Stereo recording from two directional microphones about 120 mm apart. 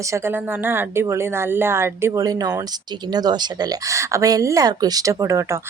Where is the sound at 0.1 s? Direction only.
15° right (ahead or behind).